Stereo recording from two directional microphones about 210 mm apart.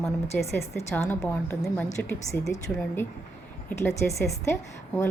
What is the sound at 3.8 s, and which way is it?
Speech, 15° left (ahead or behind).